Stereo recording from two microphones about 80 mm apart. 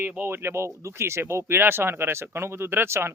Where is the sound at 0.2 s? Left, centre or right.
Right.